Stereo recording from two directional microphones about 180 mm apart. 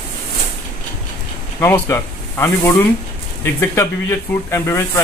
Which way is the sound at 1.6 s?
15° left (ahead or behind).